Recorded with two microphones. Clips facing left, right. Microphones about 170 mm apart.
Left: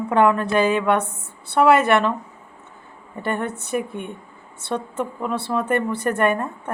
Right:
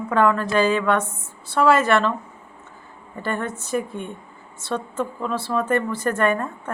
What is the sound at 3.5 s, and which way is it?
Speech, 60° left (ahead or behind).